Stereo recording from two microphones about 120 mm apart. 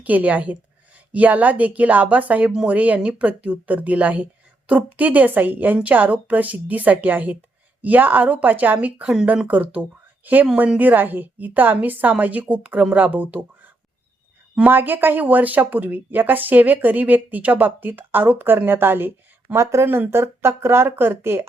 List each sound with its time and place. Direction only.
0.0 s speech: 15° right (ahead or behind)